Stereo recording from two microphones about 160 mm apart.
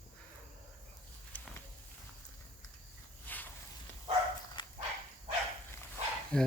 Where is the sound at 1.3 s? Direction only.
10° left (ahead or behind).